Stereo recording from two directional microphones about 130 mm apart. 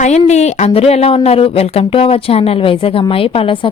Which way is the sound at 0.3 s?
60° left (ahead or behind).